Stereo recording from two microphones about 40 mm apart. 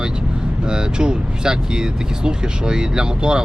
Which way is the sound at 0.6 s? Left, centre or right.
Right.